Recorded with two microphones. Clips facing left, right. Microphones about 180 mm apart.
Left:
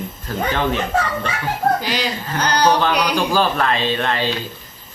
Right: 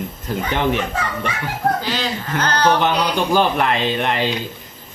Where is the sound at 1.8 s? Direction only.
15° left (ahead or behind).